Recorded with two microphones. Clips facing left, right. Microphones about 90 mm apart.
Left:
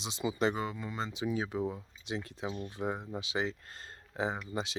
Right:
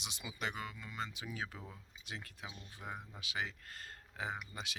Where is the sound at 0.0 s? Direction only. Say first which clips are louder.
Left 11 dB; 30° left (ahead or behind).